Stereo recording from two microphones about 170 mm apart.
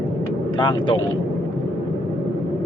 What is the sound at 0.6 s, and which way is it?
Speech, 30° left (ahead or behind).